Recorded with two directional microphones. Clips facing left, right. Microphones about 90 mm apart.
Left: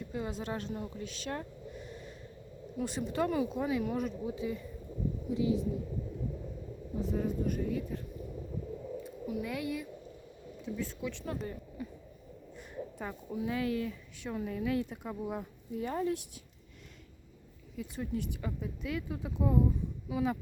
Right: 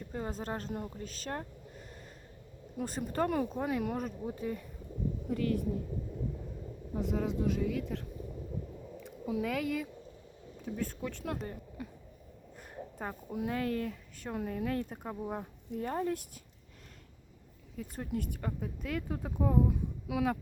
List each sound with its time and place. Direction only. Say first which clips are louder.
0.0 s speech: left 1 dB; 45° right (ahead or behind)
0.9 s a sound: left 1 dB; 40° right (ahead or behind)
2.7 s a woman's voice: even; 45° right (ahead or behind)
6.9 s speech: even; 75° right (ahead or behind)
9.0 s speech: right 5 dB; 80° right
10.8 s a woman's voice: right 1 dB; 50° right (ahead or behind)
12.5 s a sound: left 2 dB; 45° right (ahead or behind)
13.3 s a woman's voice: left 1 dB; 55° right (ahead or behind)
17.7 s a woman's voice: left 1 dB; 50° right (ahead or behind); by 20.4 s 65° right (ahead or behind)